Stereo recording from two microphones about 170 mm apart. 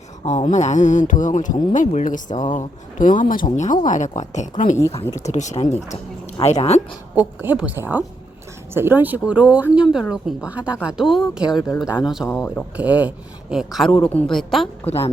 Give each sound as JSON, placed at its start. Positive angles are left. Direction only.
{"t": 0.3, "sound": "speech", "side_deg": 45}
{"t": 7.2, "sound": "a woman's voice", "side_deg": -10}
{"t": 14.8, "sound": "speech", "side_deg": 35}